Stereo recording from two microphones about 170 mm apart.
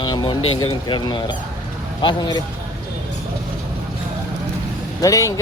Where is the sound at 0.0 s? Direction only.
25° left (ahead or behind).